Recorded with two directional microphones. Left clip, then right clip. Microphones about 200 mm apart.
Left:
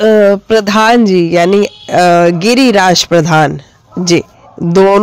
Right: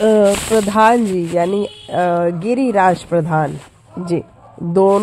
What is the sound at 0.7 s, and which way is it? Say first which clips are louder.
Speech: left 4 dB; 35° left (ahead or behind).